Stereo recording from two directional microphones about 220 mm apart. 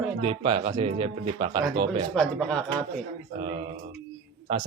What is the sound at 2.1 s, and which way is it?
Speech, 5° left (ahead or behind).